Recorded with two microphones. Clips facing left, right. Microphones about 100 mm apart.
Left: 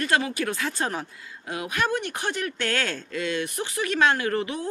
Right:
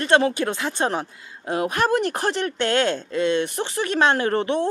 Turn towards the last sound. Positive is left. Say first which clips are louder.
# right 6 dB
turn(degrees=-30)  # may be behind; listen again after turning